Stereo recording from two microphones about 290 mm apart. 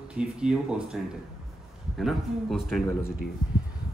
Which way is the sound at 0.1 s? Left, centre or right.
Centre.